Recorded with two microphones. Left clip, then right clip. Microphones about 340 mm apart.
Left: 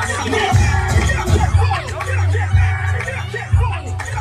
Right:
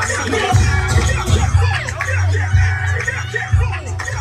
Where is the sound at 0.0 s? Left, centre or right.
Centre.